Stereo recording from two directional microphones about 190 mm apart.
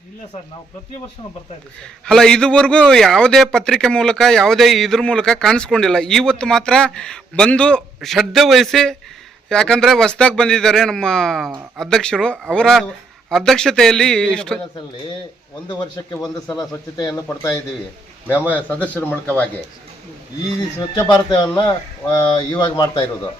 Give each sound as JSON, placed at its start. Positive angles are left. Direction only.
{"t": 1.8, "sound": "a man's voice", "side_deg": 5}
{"t": 16.0, "sound": "speech", "side_deg": 20}
{"t": 18.5, "sound": "speech", "side_deg": 10}
{"t": 20.7, "sound": "speech", "side_deg": 20}